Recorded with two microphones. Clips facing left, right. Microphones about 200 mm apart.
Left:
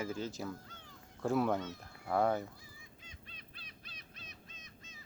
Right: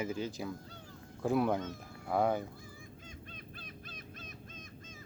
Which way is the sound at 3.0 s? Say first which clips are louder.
Right 8 dB; 50° right (ahead or behind).